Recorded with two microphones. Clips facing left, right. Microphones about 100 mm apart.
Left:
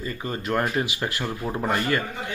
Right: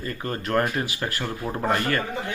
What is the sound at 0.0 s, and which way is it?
Speech, 10° left (ahead or behind).